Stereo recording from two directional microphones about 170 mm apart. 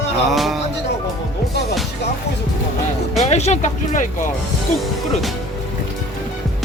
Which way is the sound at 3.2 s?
40° left (ahead or behind).